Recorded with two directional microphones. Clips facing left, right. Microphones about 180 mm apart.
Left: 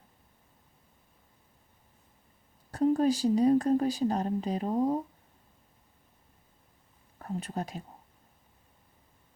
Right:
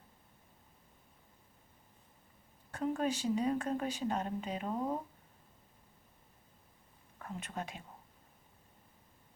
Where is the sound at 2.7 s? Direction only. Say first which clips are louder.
Left 9 dB; 35° left (ahead or behind).